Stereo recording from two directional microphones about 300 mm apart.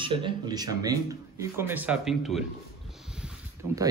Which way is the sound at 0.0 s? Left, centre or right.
Centre.